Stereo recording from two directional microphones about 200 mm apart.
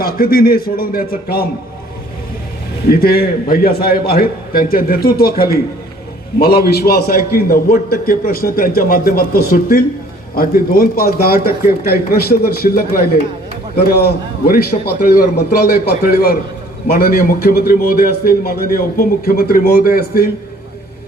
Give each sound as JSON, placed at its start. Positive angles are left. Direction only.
{"t": 0.0, "sound": "a man's voice", "side_deg": 50}
{"t": 2.9, "sound": "a man's voice", "side_deg": 50}